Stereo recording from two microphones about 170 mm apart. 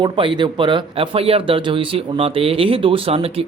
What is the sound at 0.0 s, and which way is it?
Speech, 30° right (ahead or behind).